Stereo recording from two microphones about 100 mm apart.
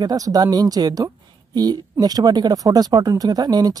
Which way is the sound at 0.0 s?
40° right (ahead or behind).